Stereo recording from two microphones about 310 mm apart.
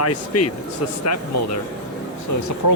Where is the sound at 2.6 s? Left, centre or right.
Left.